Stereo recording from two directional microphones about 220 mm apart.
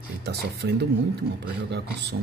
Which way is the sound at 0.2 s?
50° right (ahead or behind).